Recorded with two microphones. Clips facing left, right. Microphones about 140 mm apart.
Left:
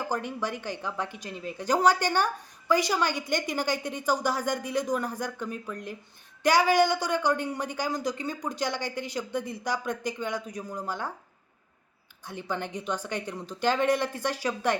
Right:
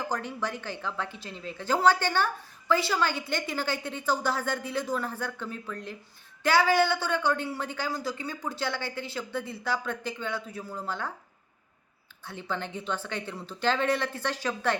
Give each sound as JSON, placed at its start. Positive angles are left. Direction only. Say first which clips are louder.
{"t": 0.1, "sound": "a woman's voice", "louder": "left 1 dB", "side_deg": 15}
{"t": 12.2, "sound": "a woman's voice", "louder": "left 1 dB", "side_deg": 15}